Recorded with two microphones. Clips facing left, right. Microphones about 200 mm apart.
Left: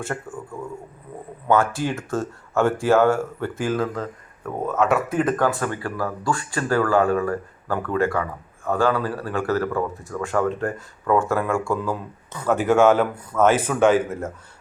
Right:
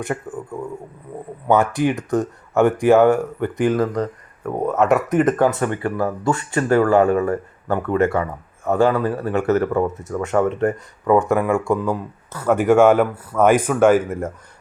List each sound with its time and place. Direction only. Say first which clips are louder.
0.0 s speech: right 4 dB; 20° right (ahead or behind)
12.3 s speech: right 4 dB; 10° right (ahead or behind)